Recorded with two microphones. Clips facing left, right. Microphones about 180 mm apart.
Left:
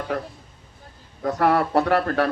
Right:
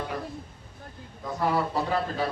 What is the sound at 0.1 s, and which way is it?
A man's voice, 75° left (ahead or behind).